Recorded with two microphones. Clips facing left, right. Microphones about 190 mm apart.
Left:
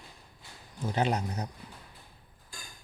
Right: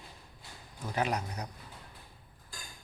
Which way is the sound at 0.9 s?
30° left (ahead or behind).